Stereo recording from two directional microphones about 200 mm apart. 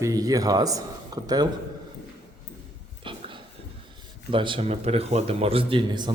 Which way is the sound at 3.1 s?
25° right (ahead or behind).